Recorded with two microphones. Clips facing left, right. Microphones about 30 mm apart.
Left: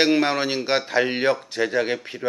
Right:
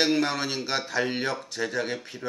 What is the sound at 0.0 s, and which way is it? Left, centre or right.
Speech, left.